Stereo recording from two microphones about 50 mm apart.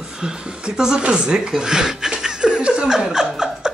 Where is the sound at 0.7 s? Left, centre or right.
Centre.